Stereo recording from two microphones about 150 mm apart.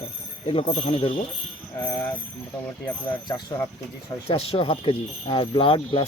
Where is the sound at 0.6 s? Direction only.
45° left (ahead or behind).